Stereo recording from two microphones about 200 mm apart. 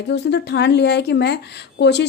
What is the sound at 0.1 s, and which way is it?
Speech, 60° left (ahead or behind).